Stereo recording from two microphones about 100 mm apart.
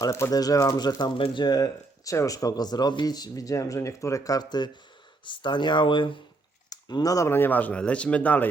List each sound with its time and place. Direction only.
0.0 s speech: 35° left (ahead or behind)
1.1 s speech: 55° left (ahead or behind)
6.7 s speech: 40° left (ahead or behind)
7.3 s speech: 20° left (ahead or behind)